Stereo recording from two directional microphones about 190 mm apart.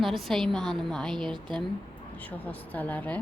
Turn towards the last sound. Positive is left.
turn(degrees=10)  # may be behind; listen again after turning